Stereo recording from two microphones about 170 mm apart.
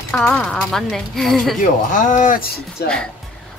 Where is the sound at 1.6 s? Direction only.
50° left (ahead or behind).